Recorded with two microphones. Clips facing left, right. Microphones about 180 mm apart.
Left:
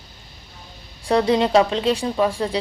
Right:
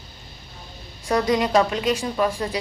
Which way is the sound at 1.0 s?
30° left (ahead or behind).